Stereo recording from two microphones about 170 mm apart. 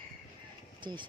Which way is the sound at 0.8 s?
25° right (ahead or behind).